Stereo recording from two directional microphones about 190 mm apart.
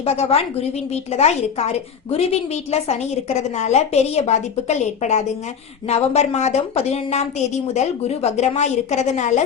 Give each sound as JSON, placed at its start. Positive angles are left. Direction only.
{"t": 0.0, "sound": "a woman's voice", "side_deg": 30}